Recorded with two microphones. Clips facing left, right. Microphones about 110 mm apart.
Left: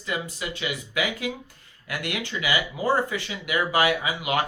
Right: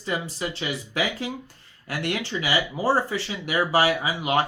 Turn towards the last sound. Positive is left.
turn(degrees=-30)  # may be behind; listen again after turning